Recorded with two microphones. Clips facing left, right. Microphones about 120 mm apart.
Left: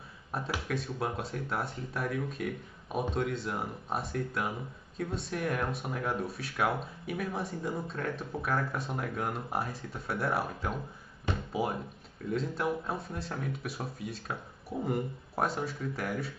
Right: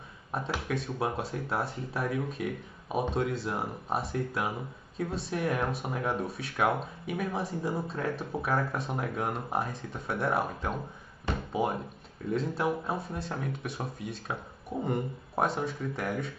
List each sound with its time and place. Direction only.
0.3 s speech: centre (ahead or behind)